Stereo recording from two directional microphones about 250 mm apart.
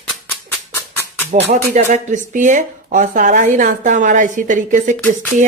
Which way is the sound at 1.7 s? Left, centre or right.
Right.